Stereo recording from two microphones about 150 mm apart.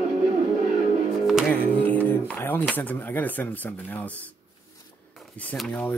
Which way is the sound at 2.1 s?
10° left (ahead or behind).